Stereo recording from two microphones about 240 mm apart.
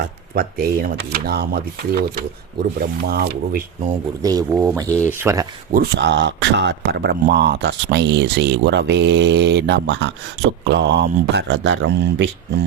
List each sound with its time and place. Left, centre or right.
0.0 s speech: right
4.2 s speech: centre
5.7 s speech: right